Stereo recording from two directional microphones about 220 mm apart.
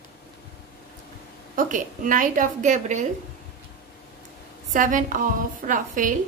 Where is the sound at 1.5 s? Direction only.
35° right (ahead or behind).